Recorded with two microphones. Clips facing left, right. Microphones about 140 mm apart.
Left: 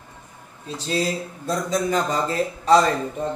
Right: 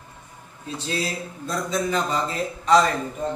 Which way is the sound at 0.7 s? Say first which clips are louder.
Left 4 dB; 40° left (ahead or behind).